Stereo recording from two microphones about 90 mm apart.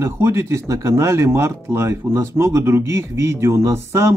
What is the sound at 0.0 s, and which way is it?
Speech, 30° right (ahead or behind).